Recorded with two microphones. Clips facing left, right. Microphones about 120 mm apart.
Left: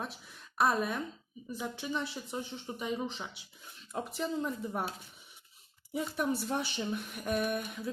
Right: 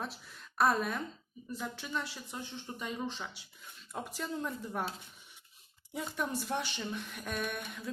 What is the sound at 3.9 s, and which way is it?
Speech, centre (ahead or behind).